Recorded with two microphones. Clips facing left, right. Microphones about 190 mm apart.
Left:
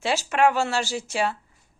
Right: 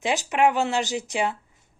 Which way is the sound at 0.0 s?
15° right (ahead or behind).